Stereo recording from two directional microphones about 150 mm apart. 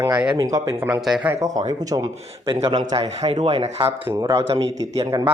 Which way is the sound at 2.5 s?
35° right (ahead or behind).